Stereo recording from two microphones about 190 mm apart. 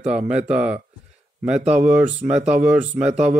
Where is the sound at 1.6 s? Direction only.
35° right (ahead or behind).